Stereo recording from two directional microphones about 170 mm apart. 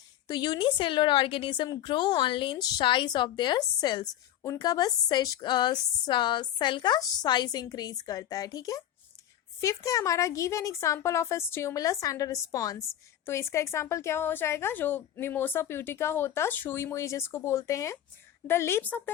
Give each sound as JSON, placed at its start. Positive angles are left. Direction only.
{"t": 0.3, "sound": "a woman's voice", "side_deg": 25}